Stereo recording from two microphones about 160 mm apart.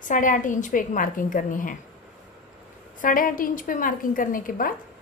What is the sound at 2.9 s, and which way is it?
A woman's voice, 60° left (ahead or behind).